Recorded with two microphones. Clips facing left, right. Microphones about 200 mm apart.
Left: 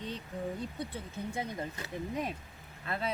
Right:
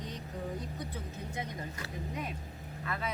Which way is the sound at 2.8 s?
30° left (ahead or behind).